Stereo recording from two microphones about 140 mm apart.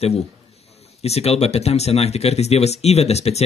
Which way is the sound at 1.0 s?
45° left (ahead or behind).